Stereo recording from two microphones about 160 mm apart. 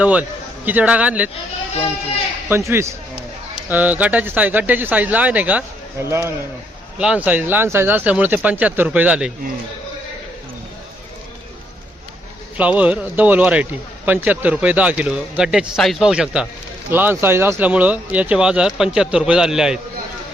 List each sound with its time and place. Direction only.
0.0 s a man's voice: 10° right (ahead or behind)
2.5 s a man's voice: 15° right (ahead or behind)
12.5 s a man's voice: 10° right (ahead or behind)